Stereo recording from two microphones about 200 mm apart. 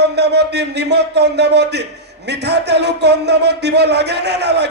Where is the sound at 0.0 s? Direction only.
55° right (ahead or behind).